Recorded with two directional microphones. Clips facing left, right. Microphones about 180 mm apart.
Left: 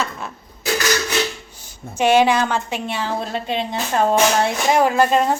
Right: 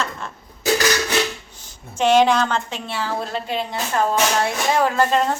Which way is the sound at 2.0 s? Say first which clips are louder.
Even; 10° left (ahead or behind).